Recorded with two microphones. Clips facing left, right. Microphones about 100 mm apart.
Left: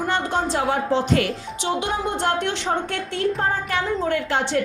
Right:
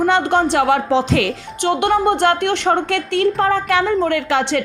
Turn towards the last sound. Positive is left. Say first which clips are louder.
# right 4 dB
turn(degrees=-85)